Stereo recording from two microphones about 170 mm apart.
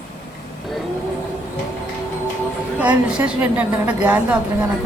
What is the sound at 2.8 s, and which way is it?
A woman's voice, 5° right (ahead or behind).